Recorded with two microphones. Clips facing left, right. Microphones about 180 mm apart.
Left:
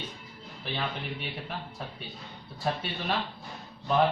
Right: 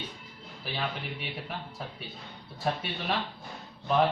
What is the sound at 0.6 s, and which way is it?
Speech, 5° right (ahead or behind).